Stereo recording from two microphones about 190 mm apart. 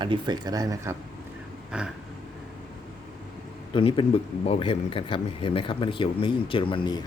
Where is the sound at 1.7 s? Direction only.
5° right (ahead or behind).